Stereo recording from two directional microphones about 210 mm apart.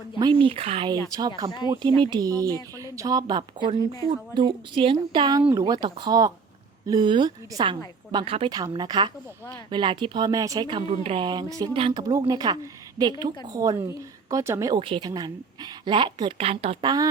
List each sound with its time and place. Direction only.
0.4 s speech: 25° right (ahead or behind)
1.4 s a woman's voice: 15° right (ahead or behind)
3.8 s speech: 15° left (ahead or behind)
4.4 s speech: 20° right (ahead or behind)
5.4 s a woman's voice: 5° right (ahead or behind)
5.6 s a woman's voice: 20° right (ahead or behind)